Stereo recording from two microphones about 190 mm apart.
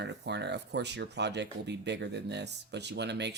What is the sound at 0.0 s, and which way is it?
Speech, 65° right (ahead or behind).